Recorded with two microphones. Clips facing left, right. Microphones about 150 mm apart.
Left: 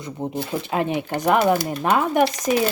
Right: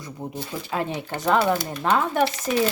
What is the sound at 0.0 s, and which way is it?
A woman's voice, 20° left (ahead or behind).